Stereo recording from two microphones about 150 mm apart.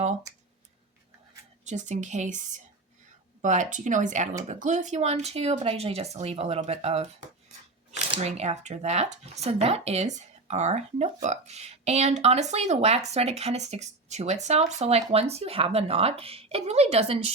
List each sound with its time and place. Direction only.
1.6 s speech: 55° right (ahead or behind)